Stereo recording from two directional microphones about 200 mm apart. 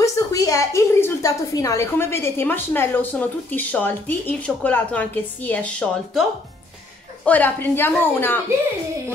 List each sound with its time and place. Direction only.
0.0 s a woman's voice: 15° left (ahead or behind)
7.2 s a woman's voice: 10° left (ahead or behind)